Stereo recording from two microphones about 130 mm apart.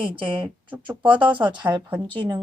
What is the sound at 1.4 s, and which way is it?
Speech, 35° right (ahead or behind).